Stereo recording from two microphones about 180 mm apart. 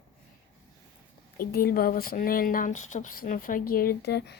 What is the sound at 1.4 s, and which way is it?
Speech, 55° left (ahead or behind).